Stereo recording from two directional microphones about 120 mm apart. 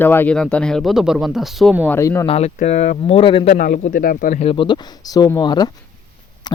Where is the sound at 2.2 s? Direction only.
55° left (ahead or behind).